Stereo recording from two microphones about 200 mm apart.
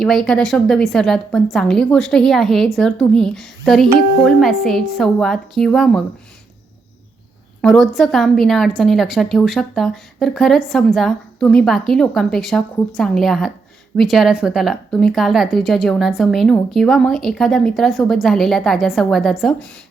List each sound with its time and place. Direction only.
0.0 s a woman's voice: centre (ahead or behind)
7.6 s a woman's voice: centre (ahead or behind)